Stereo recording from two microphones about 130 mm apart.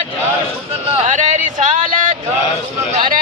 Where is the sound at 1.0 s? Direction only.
75° right (ahead or behind).